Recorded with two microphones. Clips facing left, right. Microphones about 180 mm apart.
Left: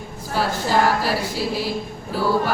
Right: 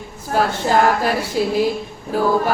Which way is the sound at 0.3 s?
50° right (ahead or behind).